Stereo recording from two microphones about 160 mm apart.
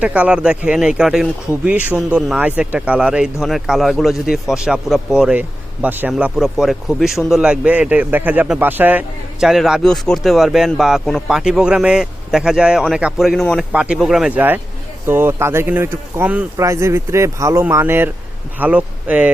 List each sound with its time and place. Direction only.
0.0 s a man's voice: 10° right (ahead or behind)